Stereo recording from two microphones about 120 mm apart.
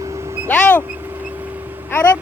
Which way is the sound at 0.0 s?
25° right (ahead or behind).